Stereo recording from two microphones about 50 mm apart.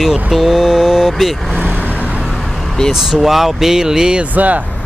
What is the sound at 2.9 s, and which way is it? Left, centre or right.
Speech, centre.